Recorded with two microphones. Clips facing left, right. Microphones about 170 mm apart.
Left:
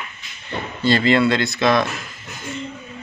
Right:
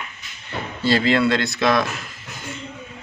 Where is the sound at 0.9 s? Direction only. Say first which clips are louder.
Left 2 dB; 5° right (ahead or behind).